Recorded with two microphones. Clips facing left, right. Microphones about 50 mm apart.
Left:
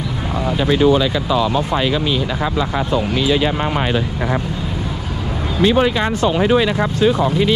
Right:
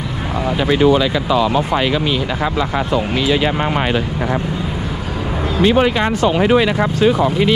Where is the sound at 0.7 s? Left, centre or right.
Right.